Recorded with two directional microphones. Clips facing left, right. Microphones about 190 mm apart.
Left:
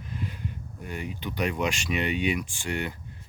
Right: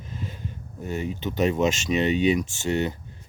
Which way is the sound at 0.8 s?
25° right (ahead or behind).